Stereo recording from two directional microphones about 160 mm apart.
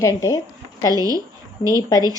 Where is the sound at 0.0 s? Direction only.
20° left (ahead or behind).